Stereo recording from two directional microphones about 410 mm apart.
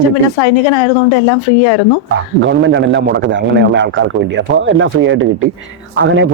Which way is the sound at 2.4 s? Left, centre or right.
Right.